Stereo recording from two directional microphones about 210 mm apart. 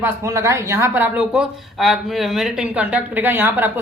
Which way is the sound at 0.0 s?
15° right (ahead or behind).